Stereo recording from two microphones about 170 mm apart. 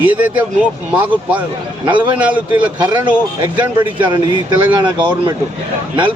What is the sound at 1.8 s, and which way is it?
Speech, 30° right (ahead or behind).